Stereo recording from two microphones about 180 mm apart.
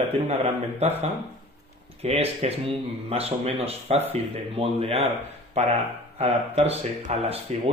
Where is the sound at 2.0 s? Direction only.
35° right (ahead or behind).